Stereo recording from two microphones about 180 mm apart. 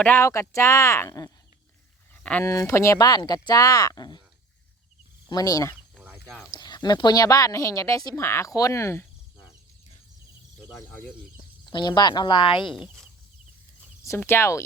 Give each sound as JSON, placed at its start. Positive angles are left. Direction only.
{"t": 0.0, "sound": "speech", "side_deg": 10}
{"t": 5.3, "sound": "speech", "side_deg": 20}
{"t": 6.0, "sound": "a sound", "side_deg": -10}
{"t": 6.5, "sound": "speech", "side_deg": 25}
{"t": 10.8, "sound": "speech", "side_deg": 15}
{"t": 11.6, "sound": "speech", "side_deg": 25}
{"t": 12.6, "sound": "speech", "side_deg": 0}
{"t": 14.2, "sound": "speech", "side_deg": 15}